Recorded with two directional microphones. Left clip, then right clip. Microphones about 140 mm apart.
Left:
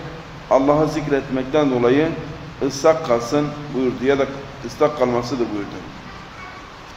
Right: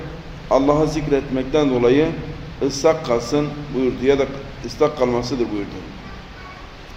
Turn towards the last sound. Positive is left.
turn(degrees=-5)  # may be behind; listen again after turning